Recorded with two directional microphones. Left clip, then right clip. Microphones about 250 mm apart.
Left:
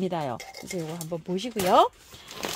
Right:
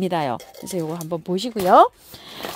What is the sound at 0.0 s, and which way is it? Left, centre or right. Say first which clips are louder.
Speech: right 7 dB; right.